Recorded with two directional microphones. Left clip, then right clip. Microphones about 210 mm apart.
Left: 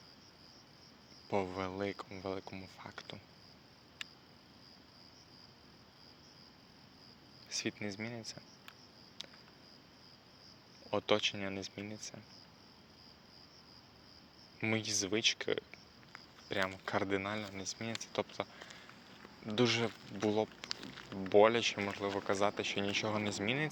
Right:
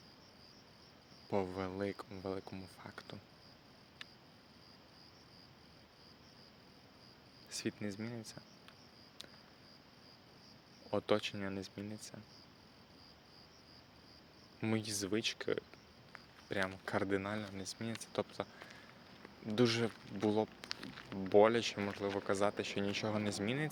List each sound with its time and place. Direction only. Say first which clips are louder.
1.3 s speech: left 2 dB; 20° right (ahead or behind)
4.0 s a sound: left 6 dB; 55° left (ahead or behind)
7.5 s speech: left 3 dB; 20° right (ahead or behind)
9.2 s a sound: left 5 dB; 20° right (ahead or behind)
10.9 s speech: left 3 dB; 20° right (ahead or behind)
14.6 s speech: left 4 dB; 20° right (ahead or behind)
19.5 s speech: left 1 dB; 20° right (ahead or behind)
20.7 s a sound: left 2 dB; 55° left (ahead or behind)
21.2 s speech: left 2 dB; 20° right (ahead or behind)